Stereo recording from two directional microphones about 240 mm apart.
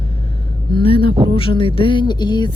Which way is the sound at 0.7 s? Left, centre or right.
Left.